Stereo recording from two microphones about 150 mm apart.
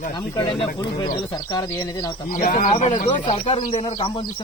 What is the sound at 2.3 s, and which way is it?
Speech, 70° left (ahead or behind).